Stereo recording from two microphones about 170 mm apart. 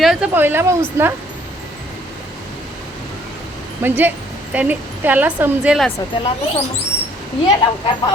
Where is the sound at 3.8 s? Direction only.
10° right (ahead or behind).